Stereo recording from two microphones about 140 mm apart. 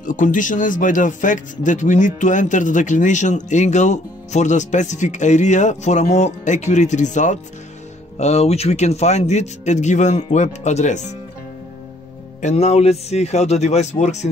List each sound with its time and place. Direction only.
0.0 s speech: 65° left (ahead or behind)
12.4 s speech: 55° left (ahead or behind)